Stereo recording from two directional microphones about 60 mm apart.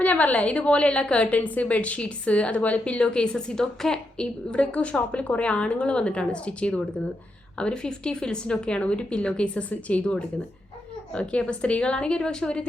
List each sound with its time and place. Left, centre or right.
0.0 s a woman's voice: left